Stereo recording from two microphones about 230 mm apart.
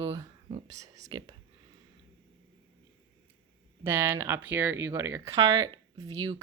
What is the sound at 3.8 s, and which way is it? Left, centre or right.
Speech, centre.